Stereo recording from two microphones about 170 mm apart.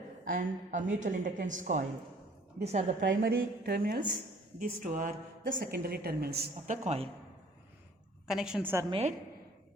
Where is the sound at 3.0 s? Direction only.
65° right (ahead or behind).